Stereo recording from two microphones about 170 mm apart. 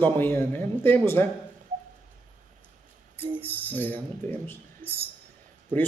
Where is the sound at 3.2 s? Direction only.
30° right (ahead or behind).